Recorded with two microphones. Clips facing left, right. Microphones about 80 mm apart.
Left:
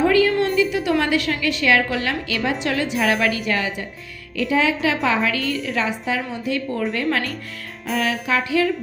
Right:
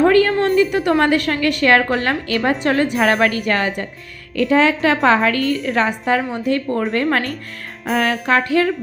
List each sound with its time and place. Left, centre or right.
0.0 s a woman's voice: right